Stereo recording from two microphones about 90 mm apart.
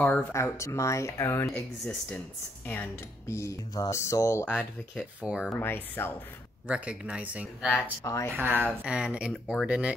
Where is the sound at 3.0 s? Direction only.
35° left (ahead or behind).